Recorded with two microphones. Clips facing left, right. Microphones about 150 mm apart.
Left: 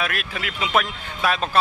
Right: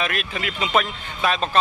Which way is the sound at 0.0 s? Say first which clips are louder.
Right 1 dB; 5° left (ahead or behind).